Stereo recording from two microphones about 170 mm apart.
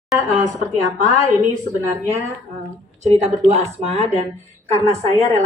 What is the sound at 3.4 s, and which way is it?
Speech, 40° right (ahead or behind).